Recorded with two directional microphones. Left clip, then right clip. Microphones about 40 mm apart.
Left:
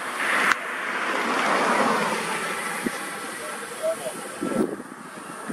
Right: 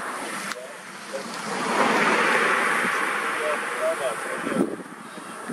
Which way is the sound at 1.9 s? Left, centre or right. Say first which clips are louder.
Right 5 dB; right.